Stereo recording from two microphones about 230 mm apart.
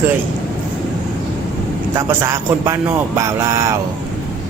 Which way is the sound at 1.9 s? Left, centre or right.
Centre.